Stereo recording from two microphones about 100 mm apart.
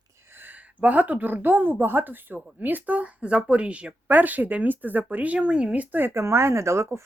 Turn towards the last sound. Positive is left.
turn(degrees=-30)  # may be behind; listen again after turning